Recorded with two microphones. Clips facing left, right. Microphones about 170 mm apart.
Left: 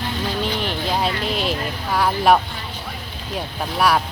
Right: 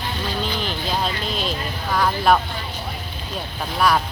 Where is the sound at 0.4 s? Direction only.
65° left (ahead or behind).